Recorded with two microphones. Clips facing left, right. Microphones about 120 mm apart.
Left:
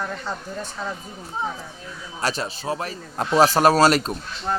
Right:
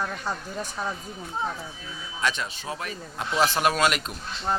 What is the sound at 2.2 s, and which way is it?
A man's voice, 35° left (ahead or behind).